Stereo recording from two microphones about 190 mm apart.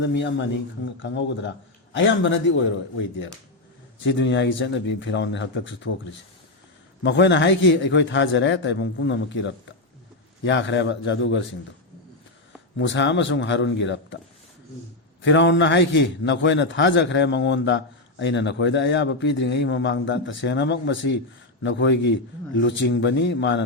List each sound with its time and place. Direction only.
0.0 s a man's voice: 70° left (ahead or behind)
4.0 s a man's voice: 70° left (ahead or behind)
7.0 s a man's voice: 65° left (ahead or behind)
12.8 s a man's voice: 70° left (ahead or behind)
15.2 s a man's voice: 70° left (ahead or behind)